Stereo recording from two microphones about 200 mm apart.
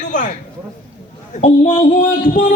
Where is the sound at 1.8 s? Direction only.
45° left (ahead or behind).